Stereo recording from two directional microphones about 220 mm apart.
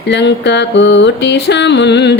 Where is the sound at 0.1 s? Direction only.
50° left (ahead or behind).